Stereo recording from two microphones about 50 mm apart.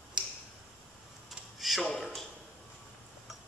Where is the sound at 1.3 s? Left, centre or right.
Centre.